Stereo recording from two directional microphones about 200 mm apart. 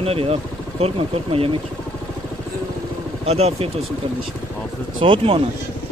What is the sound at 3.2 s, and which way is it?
Speech, 30° right (ahead or behind).